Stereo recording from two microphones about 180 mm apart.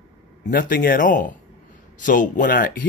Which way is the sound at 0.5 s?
50° left (ahead or behind).